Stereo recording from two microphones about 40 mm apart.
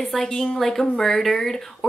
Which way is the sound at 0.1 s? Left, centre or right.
Centre.